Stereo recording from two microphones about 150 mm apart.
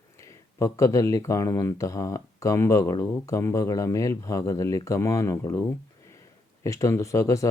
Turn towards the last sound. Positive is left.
turn(degrees=20)  # may be behind; listen again after turning